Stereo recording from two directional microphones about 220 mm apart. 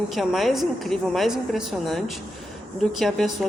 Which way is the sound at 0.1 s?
Centre (ahead or behind).